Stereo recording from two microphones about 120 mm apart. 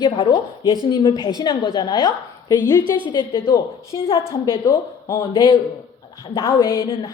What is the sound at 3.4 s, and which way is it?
Speech, 25° left (ahead or behind).